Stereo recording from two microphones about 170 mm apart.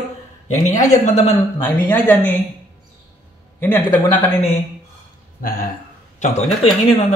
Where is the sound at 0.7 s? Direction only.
45° left (ahead or behind).